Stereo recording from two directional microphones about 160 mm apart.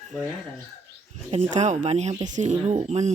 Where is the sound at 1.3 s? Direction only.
45° right (ahead or behind).